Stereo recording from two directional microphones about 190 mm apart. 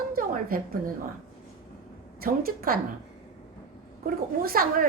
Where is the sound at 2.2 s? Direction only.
50° right (ahead or behind).